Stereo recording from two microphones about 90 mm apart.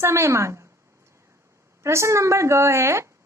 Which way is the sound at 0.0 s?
30° right (ahead or behind).